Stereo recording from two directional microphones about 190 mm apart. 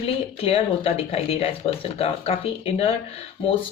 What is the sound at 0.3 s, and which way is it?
Speech, 30° left (ahead or behind).